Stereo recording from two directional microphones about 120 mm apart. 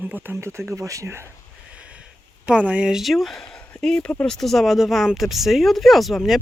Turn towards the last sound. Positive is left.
turn(degrees=0)  # may be behind; listen again after turning